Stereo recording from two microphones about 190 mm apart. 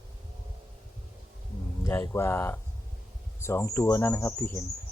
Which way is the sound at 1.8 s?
15° left (ahead or behind).